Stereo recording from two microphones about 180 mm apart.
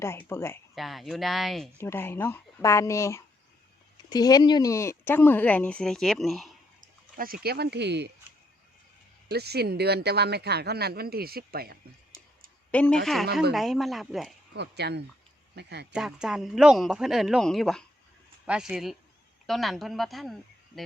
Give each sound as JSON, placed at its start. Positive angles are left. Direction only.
{"t": 0.0, "sound": "speech", "side_deg": 15}
{"t": 0.8, "sound": "a man's voice", "side_deg": 0}
{"t": 1.8, "sound": "speech", "side_deg": 15}
{"t": 6.8, "sound": "a sound", "side_deg": -50}
{"t": 7.4, "sound": "speech", "side_deg": -60}
{"t": 9.3, "sound": "speech", "side_deg": -65}
{"t": 12.7, "sound": "a man's voice", "side_deg": 5}
{"t": 14.5, "sound": "speech", "side_deg": -70}
{"t": 16.0, "sound": "a man's voice", "side_deg": -5}